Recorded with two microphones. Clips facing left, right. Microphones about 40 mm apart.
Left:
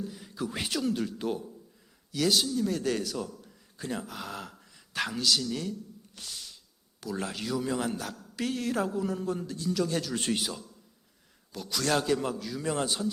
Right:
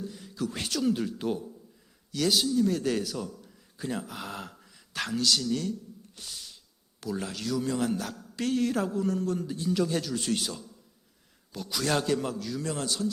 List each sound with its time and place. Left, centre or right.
0.1 s speech: centre
0.8 s a man's voice: centre
7.2 s a man's voice: centre
10.3 s a man's voice: centre
11.5 s a man's voice: centre
12.6 s a man's voice: left